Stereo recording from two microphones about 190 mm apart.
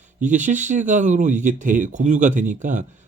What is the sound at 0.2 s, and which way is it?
Speech, 40° right (ahead or behind).